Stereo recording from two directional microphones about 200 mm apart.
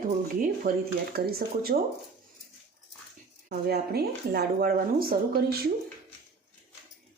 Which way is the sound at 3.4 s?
50° right (ahead or behind).